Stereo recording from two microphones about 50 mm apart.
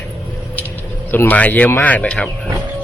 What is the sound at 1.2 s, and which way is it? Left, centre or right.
Speech, left.